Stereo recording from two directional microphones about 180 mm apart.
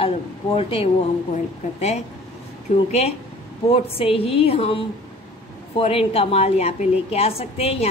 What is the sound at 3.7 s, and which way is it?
A woman's voice, 30° left (ahead or behind).